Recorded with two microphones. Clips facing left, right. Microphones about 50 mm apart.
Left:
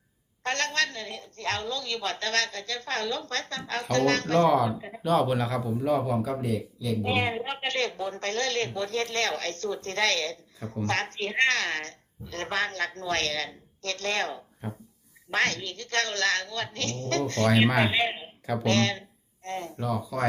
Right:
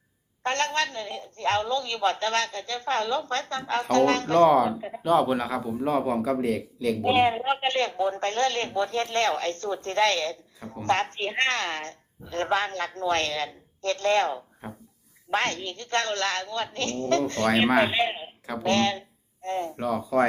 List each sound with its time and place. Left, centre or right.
0.4 s speech: right
5.0 s speech: centre
6.1 s speech: right
7.0 s speech: right